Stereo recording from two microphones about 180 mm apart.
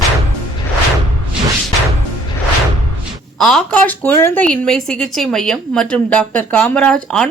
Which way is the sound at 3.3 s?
Centre (ahead or behind).